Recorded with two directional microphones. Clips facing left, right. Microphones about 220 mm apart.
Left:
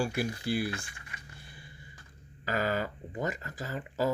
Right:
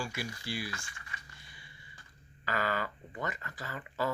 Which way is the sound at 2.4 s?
45° left (ahead or behind).